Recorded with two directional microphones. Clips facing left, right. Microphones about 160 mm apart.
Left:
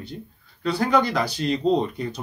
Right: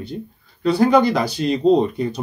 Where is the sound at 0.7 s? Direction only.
25° right (ahead or behind).